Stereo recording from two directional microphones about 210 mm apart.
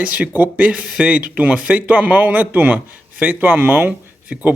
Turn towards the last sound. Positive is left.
turn(degrees=-10)  # may be behind; listen again after turning